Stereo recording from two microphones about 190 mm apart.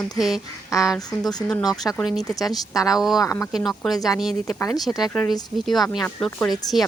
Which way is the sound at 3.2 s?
15° left (ahead or behind).